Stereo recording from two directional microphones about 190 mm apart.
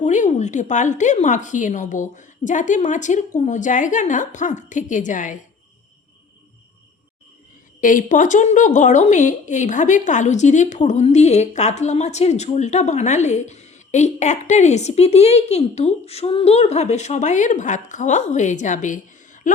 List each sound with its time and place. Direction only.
0.0 s a woman's voice: 40° left (ahead or behind)
7.8 s a woman's voice: 45° left (ahead or behind)